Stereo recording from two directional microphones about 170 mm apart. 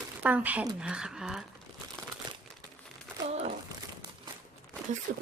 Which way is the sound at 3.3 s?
45° right (ahead or behind).